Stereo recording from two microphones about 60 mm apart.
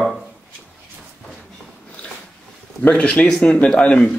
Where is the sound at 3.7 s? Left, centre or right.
Centre.